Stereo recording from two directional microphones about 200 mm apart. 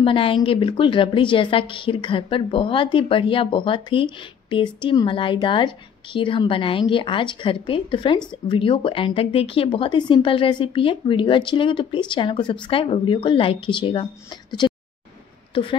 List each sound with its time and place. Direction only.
0.0 s a woman's voice: 25° left (ahead or behind)
15.5 s speech: 25° left (ahead or behind)